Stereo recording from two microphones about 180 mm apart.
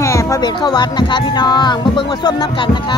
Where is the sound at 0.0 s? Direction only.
15° left (ahead or behind).